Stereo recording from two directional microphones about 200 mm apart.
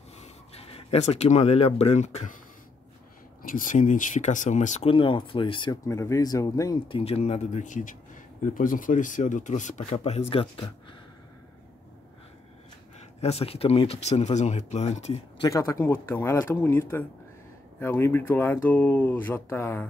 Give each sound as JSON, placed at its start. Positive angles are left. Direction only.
{"t": 0.2, "sound": "speech", "side_deg": 30}
{"t": 3.4, "sound": "speech", "side_deg": 40}
{"t": 13.2, "sound": "speech", "side_deg": 30}
{"t": 15.4, "sound": "speech", "side_deg": 15}